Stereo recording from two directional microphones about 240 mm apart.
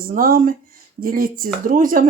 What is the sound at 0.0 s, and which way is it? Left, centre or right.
Speech, right.